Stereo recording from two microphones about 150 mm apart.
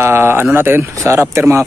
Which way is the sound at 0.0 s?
15° right (ahead or behind).